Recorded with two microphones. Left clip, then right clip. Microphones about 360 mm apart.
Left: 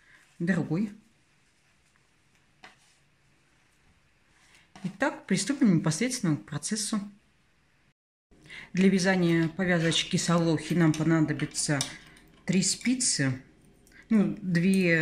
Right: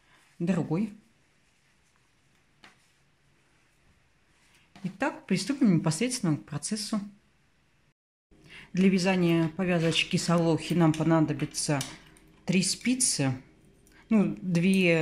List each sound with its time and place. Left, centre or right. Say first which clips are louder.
0.5 s speech: even; centre
4.8 s speech: left 2 dB; centre
8.5 s speech: left 1 dB; centre